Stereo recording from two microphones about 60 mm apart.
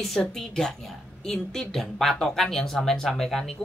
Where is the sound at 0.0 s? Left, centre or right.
Centre.